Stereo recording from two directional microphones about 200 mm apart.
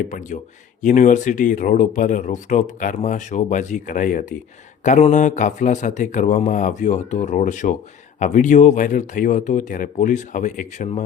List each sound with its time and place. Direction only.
0.1 s speech: 40° left (ahead or behind)